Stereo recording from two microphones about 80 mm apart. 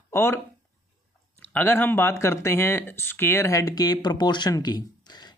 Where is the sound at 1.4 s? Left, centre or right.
Left.